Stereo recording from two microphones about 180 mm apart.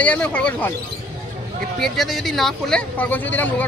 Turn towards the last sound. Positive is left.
turn(degrees=10)  # may be behind; listen again after turning